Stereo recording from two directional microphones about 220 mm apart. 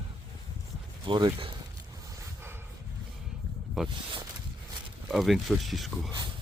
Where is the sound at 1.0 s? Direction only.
20° right (ahead or behind).